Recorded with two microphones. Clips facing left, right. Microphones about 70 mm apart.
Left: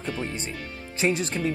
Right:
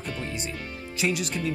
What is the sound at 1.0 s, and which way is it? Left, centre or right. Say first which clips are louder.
Speech: left 3 dB; left.